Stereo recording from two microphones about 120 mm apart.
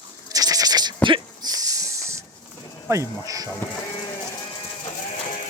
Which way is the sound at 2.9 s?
25° right (ahead or behind).